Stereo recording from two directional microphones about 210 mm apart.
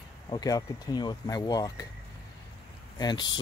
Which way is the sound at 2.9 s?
20° left (ahead or behind).